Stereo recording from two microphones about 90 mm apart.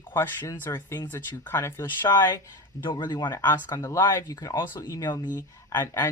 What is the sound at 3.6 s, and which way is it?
Speech, 40° left (ahead or behind).